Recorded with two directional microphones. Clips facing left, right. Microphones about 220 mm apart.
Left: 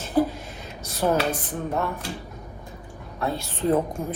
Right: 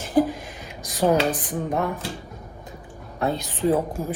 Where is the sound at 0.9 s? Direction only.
15° right (ahead or behind).